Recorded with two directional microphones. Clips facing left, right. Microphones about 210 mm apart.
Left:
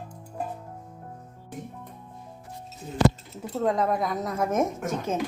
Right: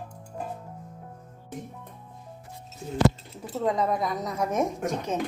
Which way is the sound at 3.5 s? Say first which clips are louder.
Left 1 dB; centre (ahead or behind).